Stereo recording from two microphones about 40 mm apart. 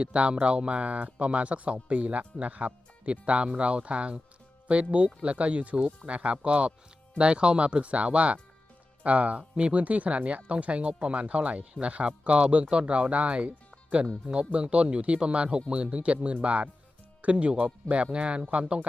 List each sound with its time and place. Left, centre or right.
0.0 s speech: right